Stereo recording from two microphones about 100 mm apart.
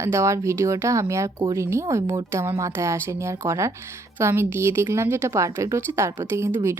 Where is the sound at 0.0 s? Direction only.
30° right (ahead or behind).